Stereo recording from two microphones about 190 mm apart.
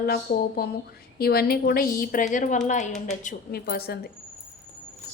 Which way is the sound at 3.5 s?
55° left (ahead or behind).